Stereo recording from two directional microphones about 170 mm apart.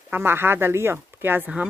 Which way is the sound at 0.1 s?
15° right (ahead or behind).